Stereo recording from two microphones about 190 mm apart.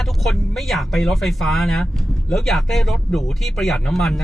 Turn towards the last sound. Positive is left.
turn(degrees=0)  # may be behind; listen again after turning